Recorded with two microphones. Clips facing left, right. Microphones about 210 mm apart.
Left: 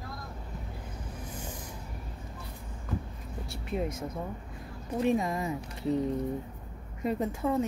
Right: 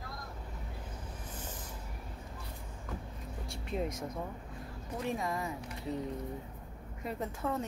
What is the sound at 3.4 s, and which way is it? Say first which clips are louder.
Speech: left 3 dB; 5° left (ahead or behind).